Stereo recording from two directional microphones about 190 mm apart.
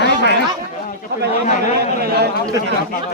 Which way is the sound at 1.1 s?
60° right (ahead or behind).